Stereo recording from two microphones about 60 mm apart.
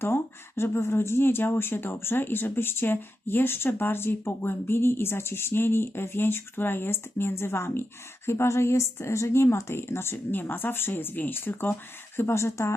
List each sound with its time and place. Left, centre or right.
0.0 s speech: left